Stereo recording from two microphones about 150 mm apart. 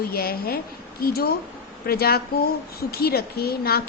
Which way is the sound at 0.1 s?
90° left.